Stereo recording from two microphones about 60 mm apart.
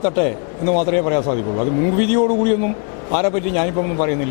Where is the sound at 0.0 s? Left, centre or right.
Left.